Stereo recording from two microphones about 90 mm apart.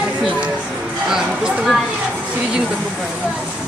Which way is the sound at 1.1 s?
5° right (ahead or behind).